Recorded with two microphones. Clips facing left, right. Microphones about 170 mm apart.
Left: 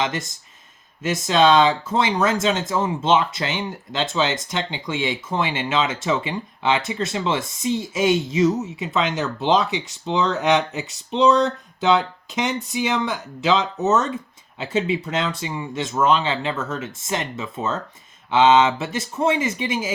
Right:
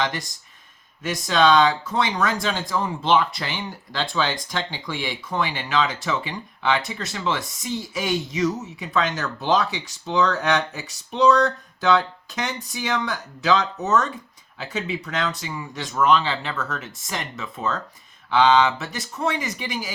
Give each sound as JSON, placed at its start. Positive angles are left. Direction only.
{"t": 0.0, "sound": "speech", "side_deg": 25}